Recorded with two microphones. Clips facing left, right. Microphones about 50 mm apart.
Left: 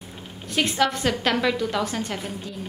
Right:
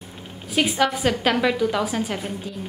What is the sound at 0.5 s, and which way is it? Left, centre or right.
A woman's voice, centre.